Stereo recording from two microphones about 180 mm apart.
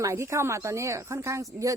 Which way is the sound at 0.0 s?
15° right (ahead or behind).